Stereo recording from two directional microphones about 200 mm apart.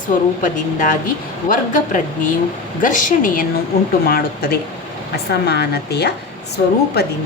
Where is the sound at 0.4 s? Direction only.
40° left (ahead or behind).